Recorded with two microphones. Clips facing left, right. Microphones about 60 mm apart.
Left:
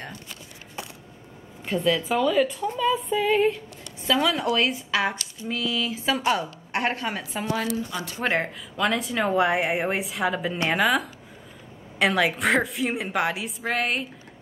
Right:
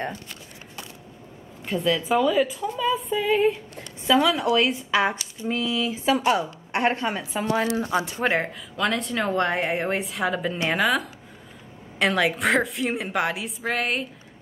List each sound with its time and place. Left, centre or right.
1.7 s a woman's voice: centre
7.6 s speech: right
8.2 s a woman's voice: centre